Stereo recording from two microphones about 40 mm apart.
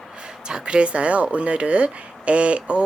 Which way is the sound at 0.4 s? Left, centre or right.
Right.